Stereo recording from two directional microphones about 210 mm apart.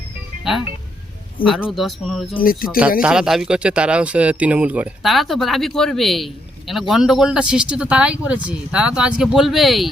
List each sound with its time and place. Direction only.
1.5 s speech: 5° right (ahead or behind)
2.4 s speech: 45° left (ahead or behind)
2.6 s speech: 5° right (ahead or behind)